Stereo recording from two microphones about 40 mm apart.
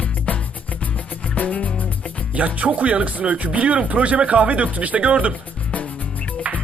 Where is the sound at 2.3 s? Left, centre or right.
Right.